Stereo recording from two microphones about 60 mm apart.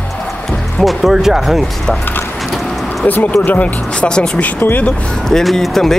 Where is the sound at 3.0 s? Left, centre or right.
Left.